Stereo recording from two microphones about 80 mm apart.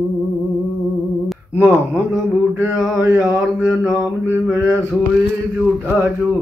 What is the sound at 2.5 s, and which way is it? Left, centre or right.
Mantra, right.